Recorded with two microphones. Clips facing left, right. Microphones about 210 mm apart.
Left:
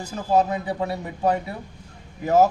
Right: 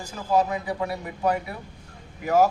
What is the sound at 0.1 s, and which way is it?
A man's voice, 25° left (ahead or behind).